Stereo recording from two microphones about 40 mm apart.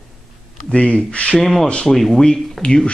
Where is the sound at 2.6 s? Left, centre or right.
Left.